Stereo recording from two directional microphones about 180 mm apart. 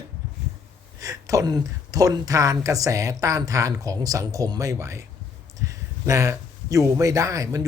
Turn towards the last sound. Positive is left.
turn(degrees=-20)  # may be behind; listen again after turning